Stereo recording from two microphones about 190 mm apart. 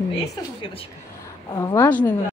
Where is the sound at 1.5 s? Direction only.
15° left (ahead or behind).